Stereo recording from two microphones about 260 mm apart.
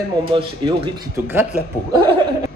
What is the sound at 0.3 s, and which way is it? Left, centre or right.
Speech, centre.